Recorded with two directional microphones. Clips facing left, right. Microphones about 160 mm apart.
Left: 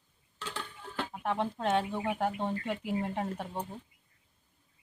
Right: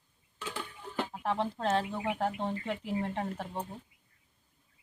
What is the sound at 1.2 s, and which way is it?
Speech, centre (ahead or behind).